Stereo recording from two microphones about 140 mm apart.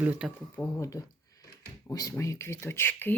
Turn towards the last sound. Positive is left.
turn(degrees=15)  # may be behind; listen again after turning